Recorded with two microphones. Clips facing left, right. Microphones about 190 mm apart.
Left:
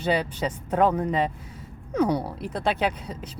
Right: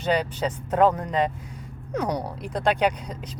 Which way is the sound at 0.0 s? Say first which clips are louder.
Right 1 dB; 10° left (ahead or behind).